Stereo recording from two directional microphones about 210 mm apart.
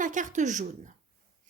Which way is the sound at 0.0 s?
35° right (ahead or behind).